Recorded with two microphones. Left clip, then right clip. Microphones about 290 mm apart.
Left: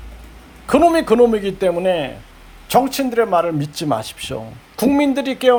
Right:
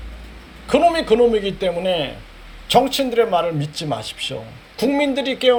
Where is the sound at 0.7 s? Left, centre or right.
Centre.